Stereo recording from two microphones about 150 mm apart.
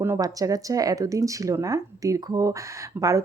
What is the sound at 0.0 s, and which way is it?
Speech, 20° right (ahead or behind).